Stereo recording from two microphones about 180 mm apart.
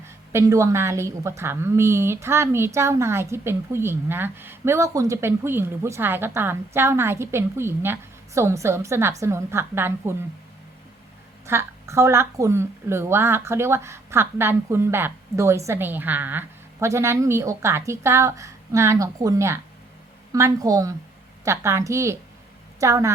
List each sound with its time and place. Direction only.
0.0 s a woman's voice: 15° right (ahead or behind)
11.4 s a woman's voice: 15° right (ahead or behind)